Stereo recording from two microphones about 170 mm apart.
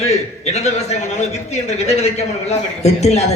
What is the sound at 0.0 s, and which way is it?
A man's voice, 40° left (ahead or behind).